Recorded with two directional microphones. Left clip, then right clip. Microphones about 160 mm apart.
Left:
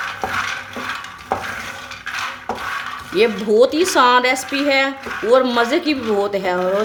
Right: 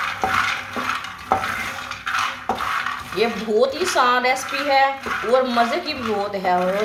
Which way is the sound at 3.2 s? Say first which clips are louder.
Left 6 dB; 90° left.